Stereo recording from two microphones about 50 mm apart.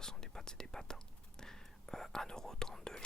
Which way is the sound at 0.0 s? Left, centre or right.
Centre.